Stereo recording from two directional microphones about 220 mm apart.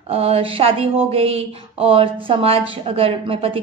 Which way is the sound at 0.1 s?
25° right (ahead or behind).